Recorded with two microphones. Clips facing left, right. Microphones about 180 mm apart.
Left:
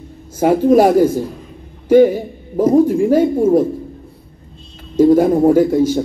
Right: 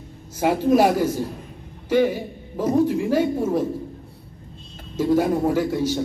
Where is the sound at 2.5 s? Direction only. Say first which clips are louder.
Left 8 dB; 45° left (ahead or behind).